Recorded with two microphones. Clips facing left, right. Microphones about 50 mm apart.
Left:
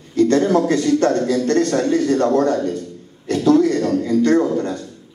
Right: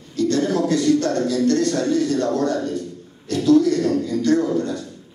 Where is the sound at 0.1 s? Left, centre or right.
Left.